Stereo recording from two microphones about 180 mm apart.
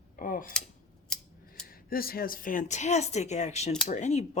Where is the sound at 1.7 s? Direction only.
55° left (ahead or behind).